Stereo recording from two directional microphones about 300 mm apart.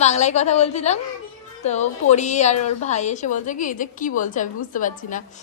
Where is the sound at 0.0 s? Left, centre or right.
Left.